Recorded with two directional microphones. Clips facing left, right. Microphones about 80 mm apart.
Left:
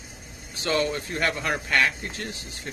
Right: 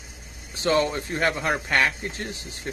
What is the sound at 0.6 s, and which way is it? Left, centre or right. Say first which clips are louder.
Speech: right 3 dB; right.